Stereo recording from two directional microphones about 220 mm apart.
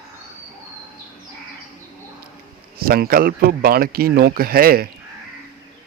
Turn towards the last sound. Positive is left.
turn(degrees=-40)  # may be behind; listen again after turning